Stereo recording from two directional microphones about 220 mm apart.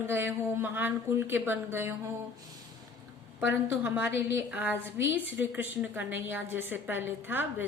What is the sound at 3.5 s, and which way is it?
A woman's voice, 10° right (ahead or behind).